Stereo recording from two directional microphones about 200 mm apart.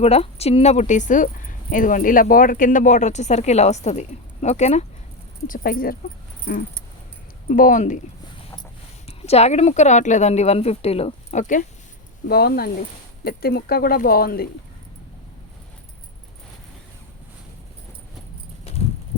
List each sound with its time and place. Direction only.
0.0 s a woman's voice: 30° left (ahead or behind)
5.5 s a woman's voice: 45° left (ahead or behind)
12.3 s speech: 50° left (ahead or behind)